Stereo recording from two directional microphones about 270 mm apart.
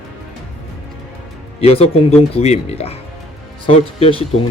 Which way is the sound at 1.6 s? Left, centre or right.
Left.